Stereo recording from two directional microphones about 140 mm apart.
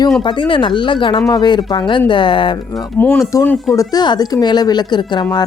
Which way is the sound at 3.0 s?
15° left (ahead or behind).